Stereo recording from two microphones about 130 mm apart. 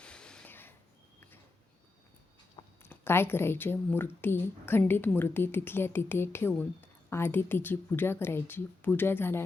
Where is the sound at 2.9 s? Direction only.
20° left (ahead or behind).